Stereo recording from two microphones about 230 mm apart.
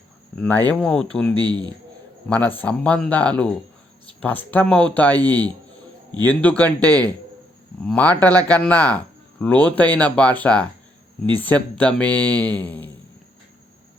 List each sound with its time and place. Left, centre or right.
0.3 s speech: centre
1.3 s a man's voice: centre
2.3 s speech: centre